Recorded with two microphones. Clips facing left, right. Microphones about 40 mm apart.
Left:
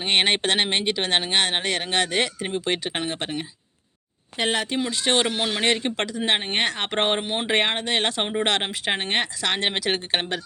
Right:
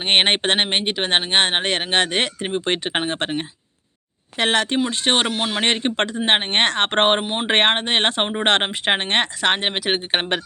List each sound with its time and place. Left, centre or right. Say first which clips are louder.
0.0 s speech: right 3 dB; right
4.4 s speech: right 5 dB; right
4.9 s speech: right 2 dB; right
6.5 s speech: right 6 dB; right
7.2 s speech: right 2 dB; centre
7.4 s speech: right 6 dB; right
9.6 s speech: right 2 dB; centre